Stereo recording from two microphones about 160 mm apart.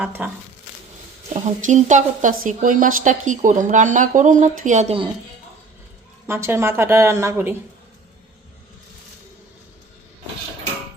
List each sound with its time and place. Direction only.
0.0 s a woman's voice: 10° right (ahead or behind)
1.3 s a woman's voice: 50° right (ahead or behind)
6.2 s a woman's voice: 15° right (ahead or behind)